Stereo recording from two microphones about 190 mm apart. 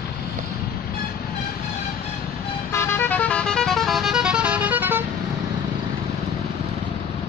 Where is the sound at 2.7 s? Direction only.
15° left (ahead or behind); by 5.0 s 10° right (ahead or behind).